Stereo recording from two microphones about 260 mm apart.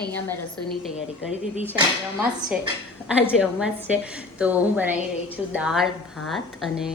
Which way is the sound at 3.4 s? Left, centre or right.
Centre.